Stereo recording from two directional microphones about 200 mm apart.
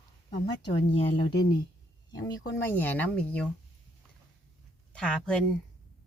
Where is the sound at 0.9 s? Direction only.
30° left (ahead or behind).